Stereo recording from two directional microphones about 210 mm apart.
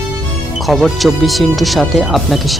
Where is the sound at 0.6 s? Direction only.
Centre (ahead or behind).